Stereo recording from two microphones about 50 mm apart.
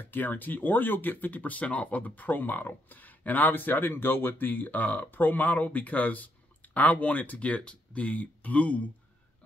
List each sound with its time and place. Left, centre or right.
0.0 s speech: left